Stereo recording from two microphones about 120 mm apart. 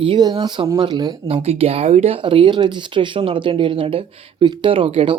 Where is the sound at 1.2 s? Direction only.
60° right (ahead or behind).